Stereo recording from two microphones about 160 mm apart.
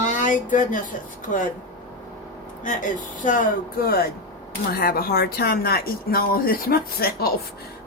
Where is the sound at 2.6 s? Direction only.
55° left (ahead or behind).